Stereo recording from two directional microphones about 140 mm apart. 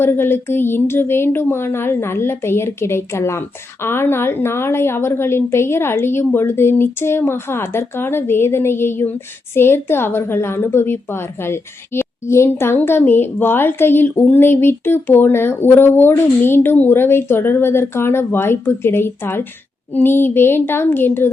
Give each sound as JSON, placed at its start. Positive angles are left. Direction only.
{"t": 0.0, "sound": "a woman's voice", "side_deg": 15}